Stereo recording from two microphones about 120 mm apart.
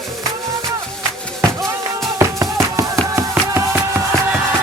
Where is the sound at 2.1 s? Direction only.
25° right (ahead or behind).